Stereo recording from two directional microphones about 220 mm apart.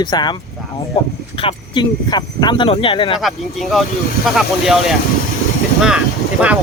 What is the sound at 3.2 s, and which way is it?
Speech, centre (ahead or behind).